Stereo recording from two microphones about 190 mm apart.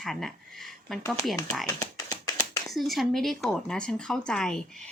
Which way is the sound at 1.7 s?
20° left (ahead or behind).